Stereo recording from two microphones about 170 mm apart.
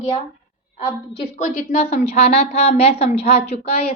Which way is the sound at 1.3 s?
45° left (ahead or behind).